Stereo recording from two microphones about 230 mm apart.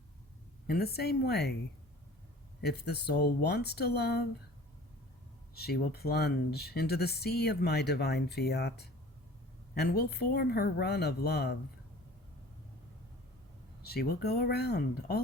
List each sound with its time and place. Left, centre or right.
0.7 s speech: left
2.6 s speech: left
5.5 s speech: left
13.8 s speech: left